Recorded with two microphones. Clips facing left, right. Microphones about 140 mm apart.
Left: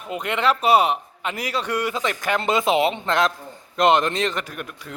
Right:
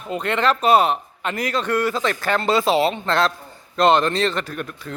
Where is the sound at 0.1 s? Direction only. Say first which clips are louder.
Right 2 dB; 10° left (ahead or behind).